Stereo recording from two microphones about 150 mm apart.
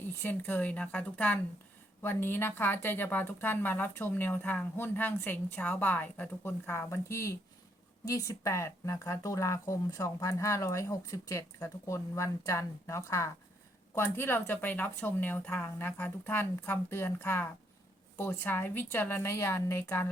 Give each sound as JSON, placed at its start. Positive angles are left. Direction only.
{"t": 0.2, "sound": "speech", "side_deg": 10}